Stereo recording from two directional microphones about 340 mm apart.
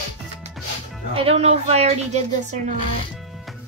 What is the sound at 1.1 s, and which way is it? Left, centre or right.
A woman's voice, centre.